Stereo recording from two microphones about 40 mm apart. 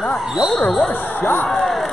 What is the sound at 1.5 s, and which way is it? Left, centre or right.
Speech, centre.